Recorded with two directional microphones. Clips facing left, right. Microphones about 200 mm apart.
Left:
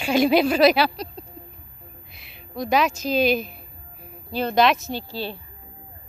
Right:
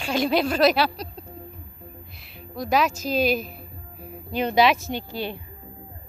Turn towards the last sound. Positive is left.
turn(degrees=-15)  # may be behind; listen again after turning